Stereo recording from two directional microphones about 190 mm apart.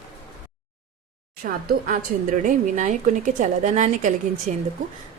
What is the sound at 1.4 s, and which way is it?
A woman's voice, 45° right (ahead or behind).